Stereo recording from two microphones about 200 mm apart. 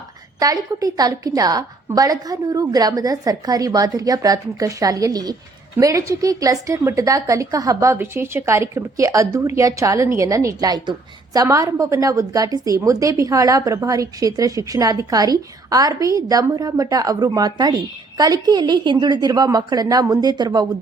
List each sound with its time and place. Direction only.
0.3 s a woman's voice: 15° right (ahead or behind)